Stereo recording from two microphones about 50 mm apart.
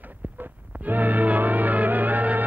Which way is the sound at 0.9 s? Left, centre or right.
Right.